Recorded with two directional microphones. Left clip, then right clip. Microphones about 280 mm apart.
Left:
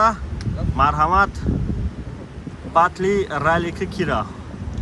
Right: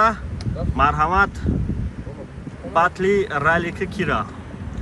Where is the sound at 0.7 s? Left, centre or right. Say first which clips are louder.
Left 1 dB; centre.